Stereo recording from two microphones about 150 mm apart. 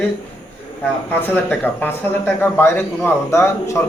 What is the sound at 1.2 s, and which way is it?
A man's voice, 10° left (ahead or behind).